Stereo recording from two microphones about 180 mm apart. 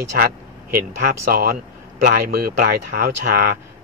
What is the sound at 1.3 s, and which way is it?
A man's voice, 55° right (ahead or behind).